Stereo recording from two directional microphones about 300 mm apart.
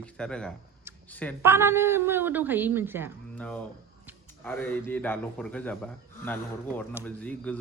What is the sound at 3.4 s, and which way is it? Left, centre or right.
A man's voice, centre.